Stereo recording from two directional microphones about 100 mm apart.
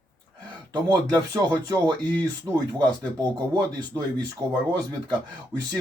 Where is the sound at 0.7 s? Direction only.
45° right (ahead or behind).